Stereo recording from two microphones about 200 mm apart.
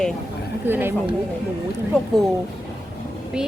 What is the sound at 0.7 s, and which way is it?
Speech, 10° right (ahead or behind).